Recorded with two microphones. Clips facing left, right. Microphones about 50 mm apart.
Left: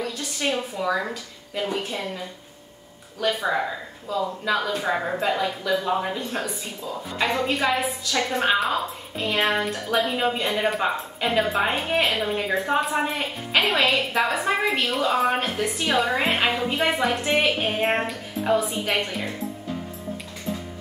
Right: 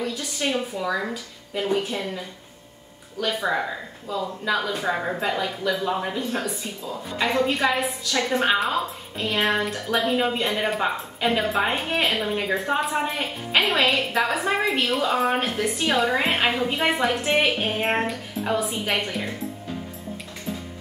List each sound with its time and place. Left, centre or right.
0.0 s a woman's voice: centre
3.2 s speech: centre